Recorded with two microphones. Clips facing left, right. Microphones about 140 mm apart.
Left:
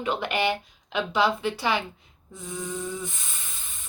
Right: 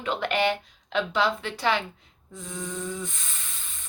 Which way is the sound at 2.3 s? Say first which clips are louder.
Left 1 dB; 5° left (ahead or behind).